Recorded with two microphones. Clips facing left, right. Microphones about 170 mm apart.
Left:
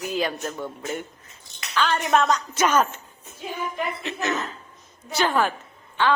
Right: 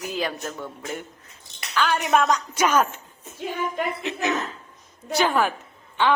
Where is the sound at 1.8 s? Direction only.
10° right (ahead or behind).